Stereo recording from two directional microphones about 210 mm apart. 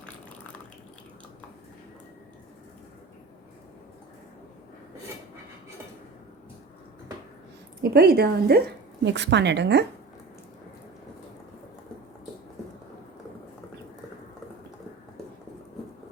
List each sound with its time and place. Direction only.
7.8 s a woman's voice: 50° right (ahead or behind)